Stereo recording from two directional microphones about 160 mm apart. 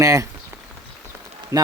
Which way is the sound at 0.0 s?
20° right (ahead or behind).